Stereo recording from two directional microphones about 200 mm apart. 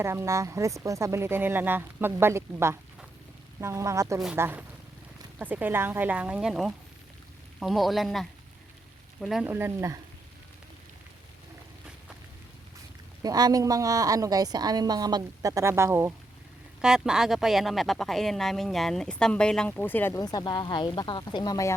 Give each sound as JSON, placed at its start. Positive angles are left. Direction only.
{"t": 0.0, "sound": "speech", "side_deg": -15}
{"t": 13.2, "sound": "speech", "side_deg": -20}